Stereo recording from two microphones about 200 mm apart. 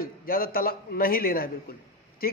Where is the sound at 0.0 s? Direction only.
45° left (ahead or behind).